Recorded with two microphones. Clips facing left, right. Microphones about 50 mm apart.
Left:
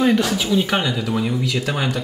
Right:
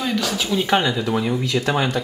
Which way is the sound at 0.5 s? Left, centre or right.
Centre.